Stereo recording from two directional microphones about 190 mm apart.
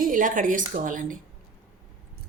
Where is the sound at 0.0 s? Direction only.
45° right (ahead or behind).